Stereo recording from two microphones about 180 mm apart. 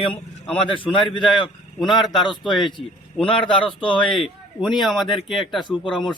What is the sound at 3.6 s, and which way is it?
A man's voice, 30° left (ahead or behind).